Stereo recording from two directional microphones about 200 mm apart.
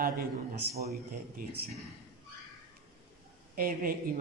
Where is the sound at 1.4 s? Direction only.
45° right (ahead or behind).